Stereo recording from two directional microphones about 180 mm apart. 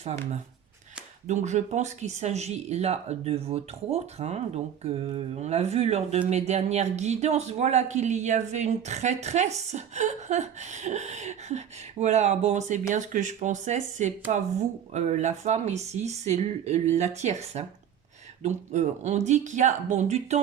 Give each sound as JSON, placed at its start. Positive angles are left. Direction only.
{"t": 1.3, "sound": "speech", "side_deg": -40}